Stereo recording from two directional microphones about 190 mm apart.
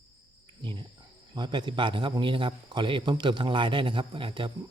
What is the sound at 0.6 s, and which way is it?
Cricket, 25° right (ahead or behind).